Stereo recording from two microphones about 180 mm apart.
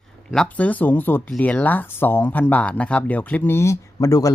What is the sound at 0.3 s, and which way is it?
Speech, 5° left (ahead or behind).